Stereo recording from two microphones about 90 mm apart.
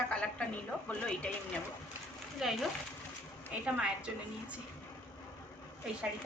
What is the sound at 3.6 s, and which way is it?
Speech, 15° right (ahead or behind).